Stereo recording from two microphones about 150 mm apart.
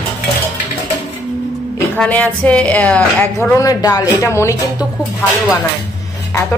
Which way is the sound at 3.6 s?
25° left (ahead or behind).